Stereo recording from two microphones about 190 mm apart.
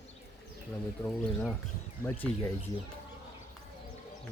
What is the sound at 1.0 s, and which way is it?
Speech, 5° left (ahead or behind).